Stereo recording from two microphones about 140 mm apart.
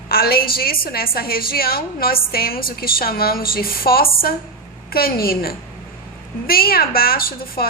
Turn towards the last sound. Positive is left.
turn(degrees=90)